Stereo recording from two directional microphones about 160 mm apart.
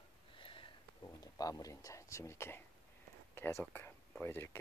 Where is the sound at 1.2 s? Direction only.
20° left (ahead or behind).